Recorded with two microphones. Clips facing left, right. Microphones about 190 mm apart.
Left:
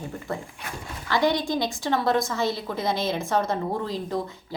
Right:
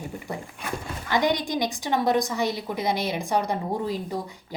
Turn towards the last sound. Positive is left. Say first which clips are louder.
# left 2 dB
turn(degrees=-15)  # may be behind; listen again after turning